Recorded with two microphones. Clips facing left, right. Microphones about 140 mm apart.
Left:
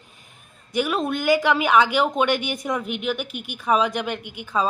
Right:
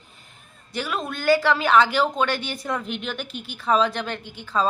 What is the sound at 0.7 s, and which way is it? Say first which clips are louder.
A woman's voice: left 6 dB; 20° left (ahead or behind).